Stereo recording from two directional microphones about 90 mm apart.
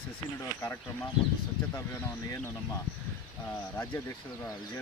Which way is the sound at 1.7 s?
30° left (ahead or behind).